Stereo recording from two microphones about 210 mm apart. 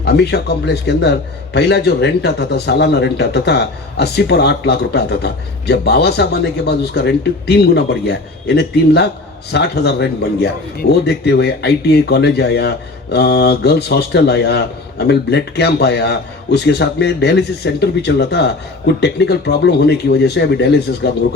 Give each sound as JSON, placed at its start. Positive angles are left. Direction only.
{"t": 0.0, "sound": "speech", "side_deg": 50}